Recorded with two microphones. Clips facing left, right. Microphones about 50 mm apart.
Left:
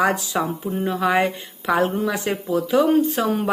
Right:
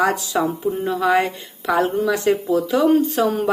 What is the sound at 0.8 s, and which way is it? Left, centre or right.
Speech, centre.